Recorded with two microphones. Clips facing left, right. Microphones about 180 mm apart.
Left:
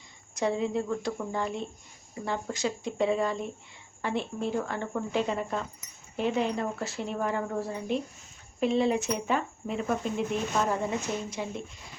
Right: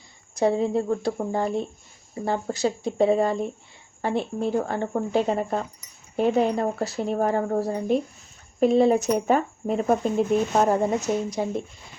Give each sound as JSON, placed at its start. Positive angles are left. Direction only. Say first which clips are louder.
{"t": 0.3, "sound": "speech", "louder": "right 6 dB", "side_deg": -35}